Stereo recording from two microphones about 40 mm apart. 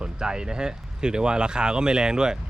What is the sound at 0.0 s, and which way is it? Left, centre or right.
Speech, right.